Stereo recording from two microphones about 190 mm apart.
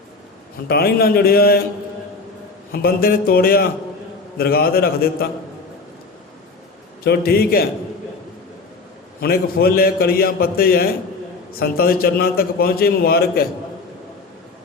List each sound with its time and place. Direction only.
0.7 s a man's voice: 55° left (ahead or behind)
2.7 s a man's voice: 50° left (ahead or behind)
7.0 s a man's voice: 55° left (ahead or behind)
9.2 s a man's voice: 55° left (ahead or behind)